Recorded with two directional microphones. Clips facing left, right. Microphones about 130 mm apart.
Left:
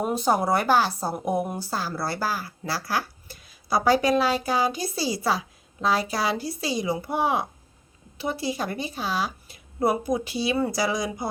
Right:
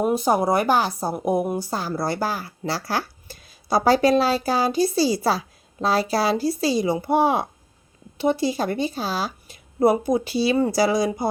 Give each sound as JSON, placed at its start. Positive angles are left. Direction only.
{"t": 0.0, "sound": "a woman's voice", "side_deg": -10}